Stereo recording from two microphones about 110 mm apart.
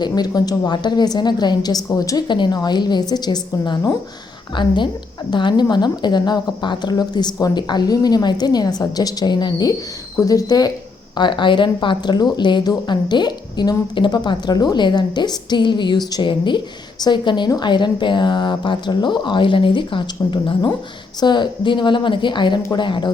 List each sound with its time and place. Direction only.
0.0 s a woman's voice: 40° left (ahead or behind)
4.5 s a woman's voice: 45° left (ahead or behind)
11.2 s speech: 45° left (ahead or behind)